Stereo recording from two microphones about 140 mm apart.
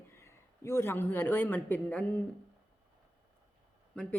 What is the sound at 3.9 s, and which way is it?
Speech, 5° left (ahead or behind).